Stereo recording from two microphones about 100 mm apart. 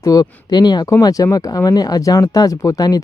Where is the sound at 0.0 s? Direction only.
40° left (ahead or behind).